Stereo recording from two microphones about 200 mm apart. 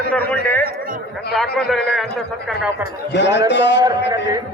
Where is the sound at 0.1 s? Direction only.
5° left (ahead or behind).